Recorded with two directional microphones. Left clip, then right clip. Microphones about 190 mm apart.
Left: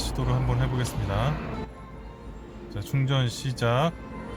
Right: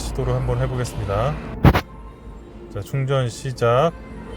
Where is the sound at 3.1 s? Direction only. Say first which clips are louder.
Right 8 dB; 5° right (ahead or behind).